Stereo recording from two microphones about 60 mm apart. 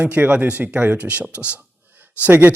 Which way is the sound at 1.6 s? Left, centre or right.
Right.